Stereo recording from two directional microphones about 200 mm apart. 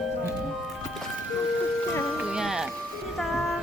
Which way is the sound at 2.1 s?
5° right (ahead or behind).